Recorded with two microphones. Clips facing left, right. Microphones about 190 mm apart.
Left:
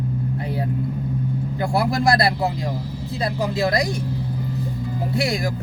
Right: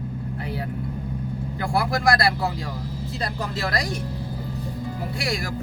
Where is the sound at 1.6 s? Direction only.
25° left (ahead or behind).